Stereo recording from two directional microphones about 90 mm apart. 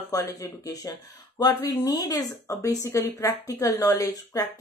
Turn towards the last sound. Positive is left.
turn(degrees=45)  # may be behind; listen again after turning